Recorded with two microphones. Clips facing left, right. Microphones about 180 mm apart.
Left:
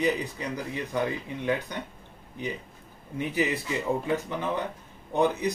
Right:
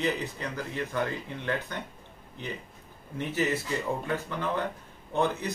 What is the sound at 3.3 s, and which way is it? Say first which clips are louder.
Speech: even; 15° left (ahead or behind).